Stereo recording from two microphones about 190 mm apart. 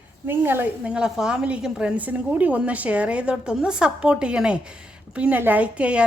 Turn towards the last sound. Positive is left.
turn(degrees=-5)  # may be behind; listen again after turning